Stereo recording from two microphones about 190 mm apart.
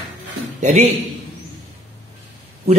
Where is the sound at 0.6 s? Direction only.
35° right (ahead or behind).